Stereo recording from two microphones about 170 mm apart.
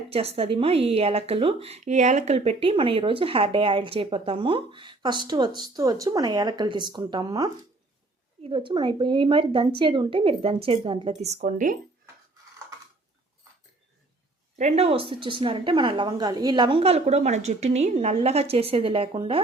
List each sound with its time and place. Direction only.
0.1 s speech: 35° right (ahead or behind)
14.6 s speech: 40° right (ahead or behind)